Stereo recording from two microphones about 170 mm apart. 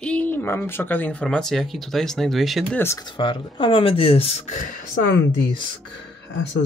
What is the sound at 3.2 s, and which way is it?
Speech, 30° left (ahead or behind).